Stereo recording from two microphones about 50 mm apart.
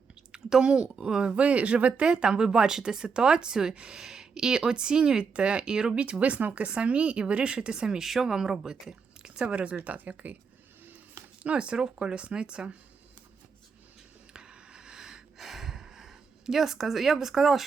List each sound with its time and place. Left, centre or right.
0.3 s speech: centre; by 10.3 s right
11.4 s speech: right
14.3 s a sound: centre